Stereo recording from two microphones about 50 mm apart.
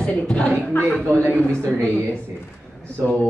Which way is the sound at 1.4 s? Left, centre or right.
Left.